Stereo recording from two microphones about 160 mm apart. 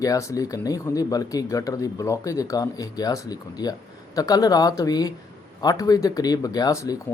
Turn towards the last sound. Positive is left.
turn(degrees=25)  # may be behind; listen again after turning